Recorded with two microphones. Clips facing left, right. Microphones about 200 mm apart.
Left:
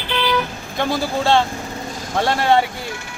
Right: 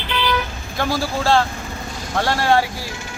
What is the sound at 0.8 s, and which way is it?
Speech, 20° left (ahead or behind).